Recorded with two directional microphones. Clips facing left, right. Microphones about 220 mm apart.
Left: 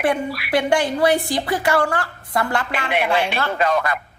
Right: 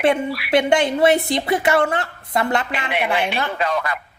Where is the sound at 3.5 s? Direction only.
45° left (ahead or behind).